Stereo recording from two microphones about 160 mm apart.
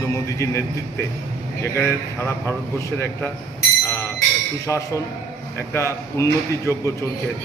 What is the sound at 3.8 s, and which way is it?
Music, 15° left (ahead or behind).